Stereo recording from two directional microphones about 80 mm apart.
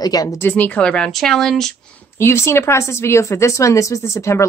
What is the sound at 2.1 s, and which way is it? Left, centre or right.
Speech, left.